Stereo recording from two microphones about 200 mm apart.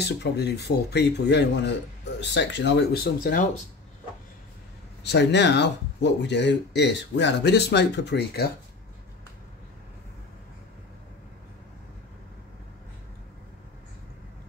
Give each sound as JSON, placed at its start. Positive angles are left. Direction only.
{"t": 0.2, "sound": "speech", "side_deg": 55}
{"t": 5.0, "sound": "speech", "side_deg": 60}